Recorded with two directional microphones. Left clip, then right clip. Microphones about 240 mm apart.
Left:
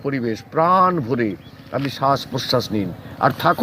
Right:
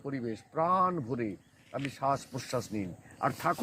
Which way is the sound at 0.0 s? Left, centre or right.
Centre.